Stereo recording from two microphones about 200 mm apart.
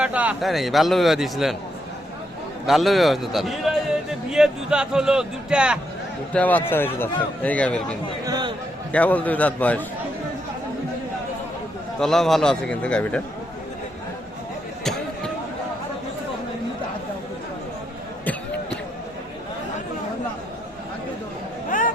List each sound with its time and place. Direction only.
0.0 s a man's voice: 5° right (ahead or behind)
2.6 s a man's voice: centre (ahead or behind)
6.3 s a man's voice: 10° left (ahead or behind)
8.2 s a sound: 20° right (ahead or behind)
8.9 s a man's voice: 5° left (ahead or behind)
11.9 s a man's voice: centre (ahead or behind)
21.7 s a sound: 45° left (ahead or behind)